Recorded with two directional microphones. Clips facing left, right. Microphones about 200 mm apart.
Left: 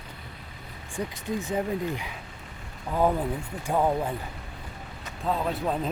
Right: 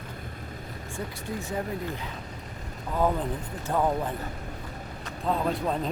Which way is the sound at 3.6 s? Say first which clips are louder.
Left 1 dB; 10° left (ahead or behind).